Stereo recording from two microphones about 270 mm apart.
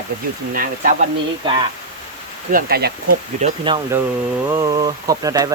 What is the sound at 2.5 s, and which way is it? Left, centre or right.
Speech, right.